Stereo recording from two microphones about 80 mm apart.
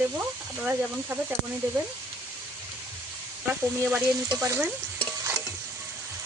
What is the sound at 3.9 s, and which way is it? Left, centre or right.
Stir, centre.